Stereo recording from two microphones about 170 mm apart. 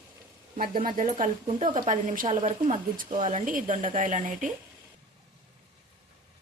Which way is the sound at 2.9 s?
50° right (ahead or behind).